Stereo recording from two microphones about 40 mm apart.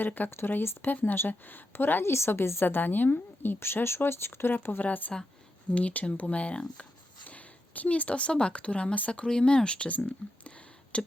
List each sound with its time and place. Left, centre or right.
0.0 s speech: left
0.3 s a woman's voice: left
0.9 s speech: left
1.7 s a woman's voice: left
2.6 s a woman's voice: left
3.8 s speech: left
4.5 s a woman's voice: left
4.8 s speech: left
7.3 s speech: left
9.2 s speech: left